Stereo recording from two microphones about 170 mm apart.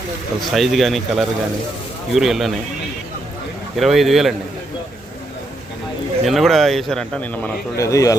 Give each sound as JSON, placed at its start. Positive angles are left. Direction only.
{"t": 0.5, "sound": "speech", "side_deg": 0}
{"t": 3.8, "sound": "speech", "side_deg": 0}
{"t": 6.2, "sound": "speech", "side_deg": 0}
{"t": 7.8, "sound": "a man's voice", "side_deg": 20}